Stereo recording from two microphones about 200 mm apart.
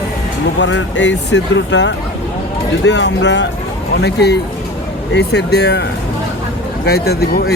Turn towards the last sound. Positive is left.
turn(degrees=50)  # may be behind; listen again after turning